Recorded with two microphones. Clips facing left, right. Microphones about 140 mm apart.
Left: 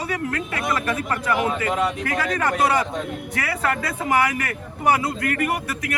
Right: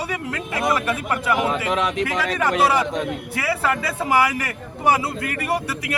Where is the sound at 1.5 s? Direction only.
90° right.